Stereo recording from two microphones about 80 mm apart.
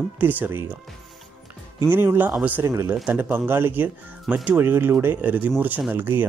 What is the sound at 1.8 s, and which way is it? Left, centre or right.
Speech, right.